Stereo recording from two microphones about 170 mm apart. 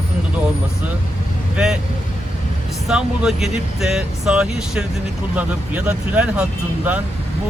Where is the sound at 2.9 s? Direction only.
5° right (ahead or behind).